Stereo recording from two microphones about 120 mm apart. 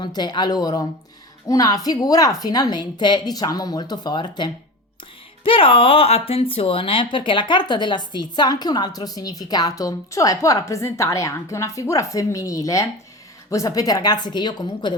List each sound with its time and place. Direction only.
0.0 s speech: 35° left (ahead or behind)